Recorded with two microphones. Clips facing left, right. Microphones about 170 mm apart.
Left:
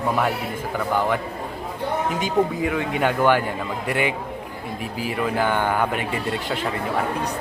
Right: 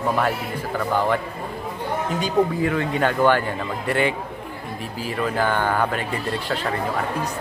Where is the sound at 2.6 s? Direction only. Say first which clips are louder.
Right 1 dB; 15° left (ahead or behind).